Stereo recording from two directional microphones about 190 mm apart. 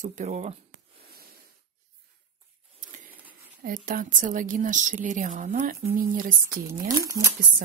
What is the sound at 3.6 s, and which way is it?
A woman's voice, 45° right (ahead or behind).